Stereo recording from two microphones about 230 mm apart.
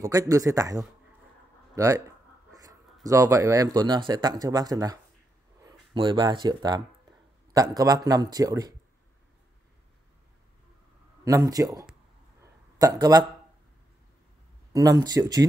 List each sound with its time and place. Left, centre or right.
0.0 s a man's voice: centre
11.2 s a man's voice: centre
14.7 s a man's voice: centre